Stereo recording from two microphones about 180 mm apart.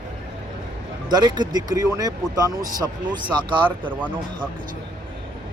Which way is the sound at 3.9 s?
10° right (ahead or behind).